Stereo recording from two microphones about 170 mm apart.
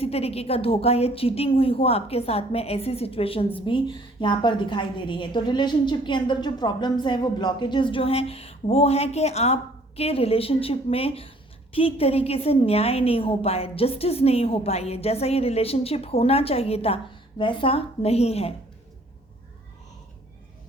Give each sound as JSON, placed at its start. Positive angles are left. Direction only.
{"t": 0.0, "sound": "a woman's voice", "side_deg": 35}